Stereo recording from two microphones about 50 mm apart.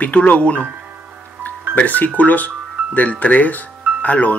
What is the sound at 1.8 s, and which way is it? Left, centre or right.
Speech, left.